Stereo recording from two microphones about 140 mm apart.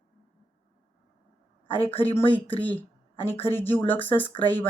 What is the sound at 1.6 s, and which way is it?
Speech, 40° left (ahead or behind).